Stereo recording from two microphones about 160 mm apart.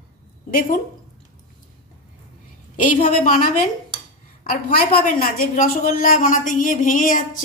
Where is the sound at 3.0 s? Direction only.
50° left (ahead or behind).